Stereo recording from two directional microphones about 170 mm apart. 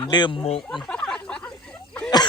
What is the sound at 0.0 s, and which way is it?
Speech, 25° left (ahead or behind).